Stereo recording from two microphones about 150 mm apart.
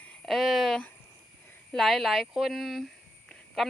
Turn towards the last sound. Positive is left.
turn(degrees=0)  # may be behind; listen again after turning